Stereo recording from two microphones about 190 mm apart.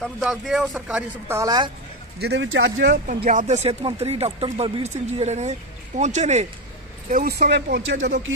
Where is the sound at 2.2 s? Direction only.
70° right (ahead or behind).